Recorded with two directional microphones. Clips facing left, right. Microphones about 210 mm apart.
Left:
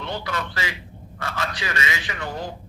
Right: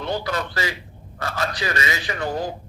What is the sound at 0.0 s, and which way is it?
A man's voice, 40° right (ahead or behind).